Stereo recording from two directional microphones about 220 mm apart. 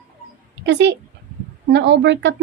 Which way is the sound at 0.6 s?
55° right (ahead or behind).